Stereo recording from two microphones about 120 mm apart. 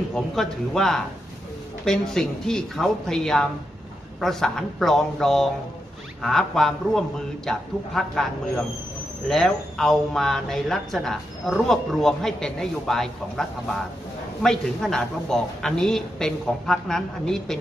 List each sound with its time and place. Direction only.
0.1 s speech: 5° left (ahead or behind)